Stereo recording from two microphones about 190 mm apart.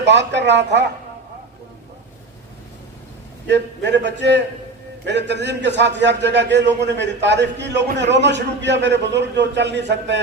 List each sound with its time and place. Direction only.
0.0 s speech: 65° right (ahead or behind)
3.4 s a man's voice: 65° right (ahead or behind)